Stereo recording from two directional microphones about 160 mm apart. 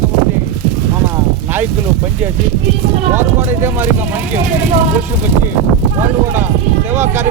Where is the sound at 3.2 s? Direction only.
15° right (ahead or behind).